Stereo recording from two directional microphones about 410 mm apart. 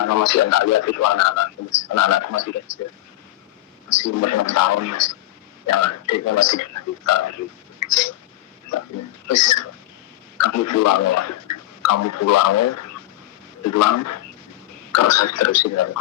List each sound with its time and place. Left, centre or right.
0.0 s a man's voice: left
3.8 s a man's voice: left
5.7 s speech: left
9.2 s speech: left
10.3 s a man's voice: left